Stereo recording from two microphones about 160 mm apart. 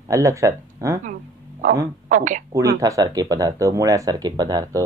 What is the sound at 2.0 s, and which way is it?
Speech, 55° right (ahead or behind).